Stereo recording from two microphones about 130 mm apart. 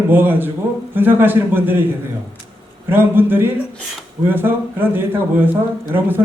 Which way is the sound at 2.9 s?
15° right (ahead or behind).